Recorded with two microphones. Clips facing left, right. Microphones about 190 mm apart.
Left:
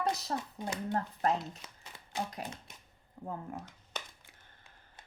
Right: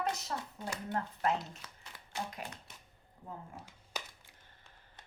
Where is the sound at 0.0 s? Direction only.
35° left (ahead or behind).